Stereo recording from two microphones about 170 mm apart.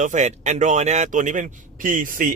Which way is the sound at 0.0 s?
45° right (ahead or behind).